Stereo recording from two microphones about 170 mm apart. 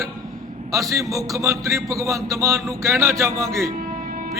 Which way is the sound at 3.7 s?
55° right (ahead or behind).